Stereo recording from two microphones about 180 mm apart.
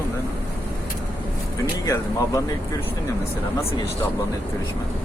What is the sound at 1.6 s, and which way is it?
Speech, 20° left (ahead or behind).